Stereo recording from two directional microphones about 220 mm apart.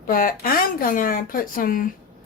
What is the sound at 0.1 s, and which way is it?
Speech, 40° left (ahead or behind).